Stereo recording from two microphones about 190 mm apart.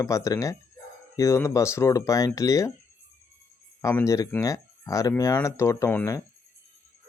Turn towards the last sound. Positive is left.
turn(degrees=15)  # may be behind; listen again after turning